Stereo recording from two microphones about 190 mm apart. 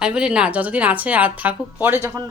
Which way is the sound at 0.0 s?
5° right (ahead or behind).